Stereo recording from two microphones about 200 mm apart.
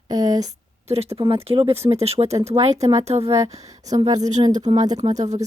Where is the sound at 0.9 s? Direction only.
30° right (ahead or behind).